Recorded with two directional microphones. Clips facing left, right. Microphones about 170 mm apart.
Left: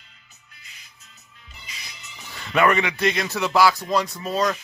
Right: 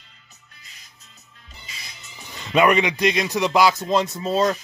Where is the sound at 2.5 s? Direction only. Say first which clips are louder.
Right 2 dB; 20° right (ahead or behind).